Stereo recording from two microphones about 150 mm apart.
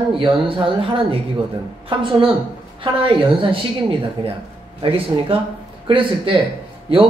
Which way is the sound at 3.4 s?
35° right (ahead or behind).